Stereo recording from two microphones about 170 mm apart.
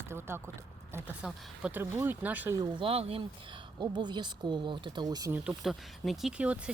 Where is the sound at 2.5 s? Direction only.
30° right (ahead or behind).